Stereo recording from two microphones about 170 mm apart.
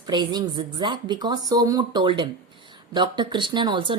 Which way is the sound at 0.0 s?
25° right (ahead or behind).